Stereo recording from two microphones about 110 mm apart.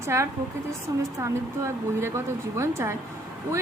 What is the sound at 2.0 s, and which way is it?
Speech, 25° right (ahead or behind).